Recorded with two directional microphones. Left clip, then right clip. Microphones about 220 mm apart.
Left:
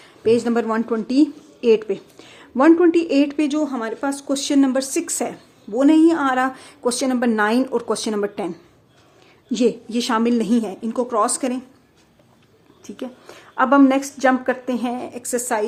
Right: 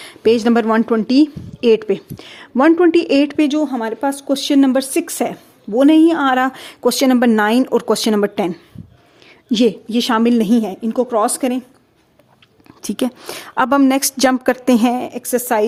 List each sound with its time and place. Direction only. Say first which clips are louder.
0.0 s a woman's voice: right 4 dB; 45° right (ahead or behind); by 11.6 s 25° right (ahead or behind)
12.8 s a woman's voice: right 11 dB; 50° right (ahead or behind); by 15.6 s 30° right (ahead or behind)